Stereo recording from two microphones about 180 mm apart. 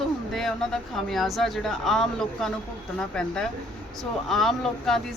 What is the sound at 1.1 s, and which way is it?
A woman's voice, centre (ahead or behind).